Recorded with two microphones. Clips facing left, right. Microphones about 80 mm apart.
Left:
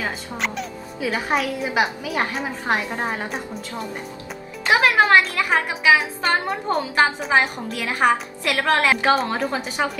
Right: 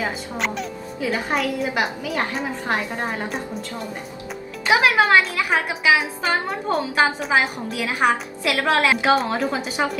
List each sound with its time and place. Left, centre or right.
0.0 s speech: centre
4.6 s speech: centre